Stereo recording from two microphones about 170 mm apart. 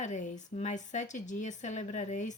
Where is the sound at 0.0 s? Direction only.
45° left (ahead or behind).